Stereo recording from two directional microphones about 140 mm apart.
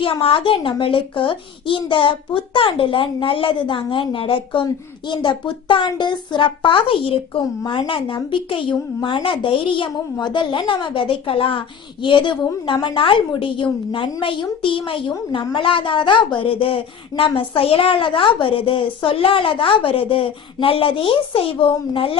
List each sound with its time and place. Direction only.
0.0 s a woman's voice: 40° left (ahead or behind)